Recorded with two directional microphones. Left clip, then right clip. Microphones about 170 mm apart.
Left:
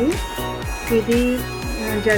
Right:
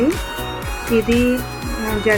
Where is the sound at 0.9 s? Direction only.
10° right (ahead or behind).